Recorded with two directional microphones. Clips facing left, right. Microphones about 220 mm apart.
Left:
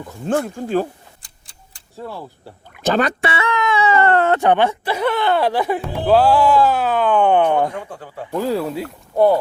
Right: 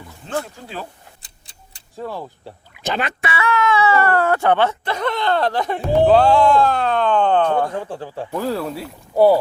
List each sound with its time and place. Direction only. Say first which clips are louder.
0.3 s speech: left 7 dB; 50° left (ahead or behind)
1.2 s clock: right 1 dB; 25° right (ahead or behind)
2.7 s speech: left 6 dB; 45° left (ahead or behind)
3.2 s speech: even; 30° left (ahead or behind); by 8.8 s 10° left (ahead or behind)
8.8 s speech: right 3 dB; 5° right (ahead or behind)